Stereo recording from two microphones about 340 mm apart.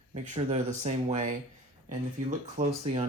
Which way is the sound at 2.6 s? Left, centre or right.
Centre.